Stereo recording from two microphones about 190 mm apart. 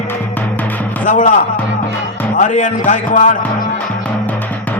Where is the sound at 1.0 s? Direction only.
40° left (ahead or behind).